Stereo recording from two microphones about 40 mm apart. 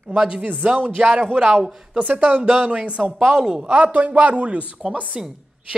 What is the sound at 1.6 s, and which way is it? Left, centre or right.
Speech, centre.